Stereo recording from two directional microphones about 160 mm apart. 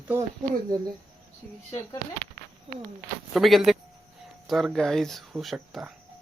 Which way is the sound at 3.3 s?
Centre (ahead or behind).